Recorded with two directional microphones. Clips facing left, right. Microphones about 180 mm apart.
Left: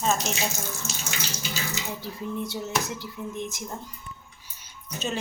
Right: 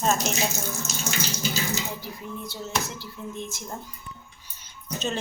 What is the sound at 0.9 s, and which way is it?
Water tap, 40° right (ahead or behind).